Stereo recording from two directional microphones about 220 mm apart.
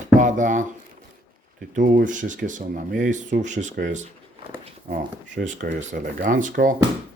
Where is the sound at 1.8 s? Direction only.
35° right (ahead or behind).